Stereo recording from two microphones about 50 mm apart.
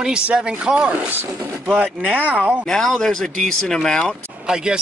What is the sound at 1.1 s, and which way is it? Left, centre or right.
Speech, right.